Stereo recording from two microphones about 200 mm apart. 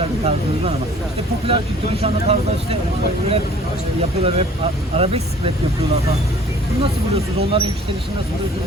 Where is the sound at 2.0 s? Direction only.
30° right (ahead or behind).